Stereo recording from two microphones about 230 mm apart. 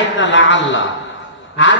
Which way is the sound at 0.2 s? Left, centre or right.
Left.